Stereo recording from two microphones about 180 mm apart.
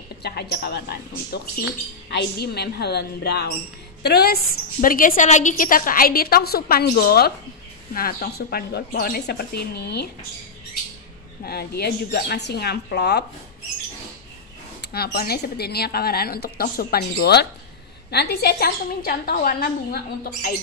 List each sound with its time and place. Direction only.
0.2 s a woman's voice: 60° left (ahead or behind)
11.4 s a woman's voice: 60° left (ahead or behind)
14.8 s a woman's voice: 60° left (ahead or behind)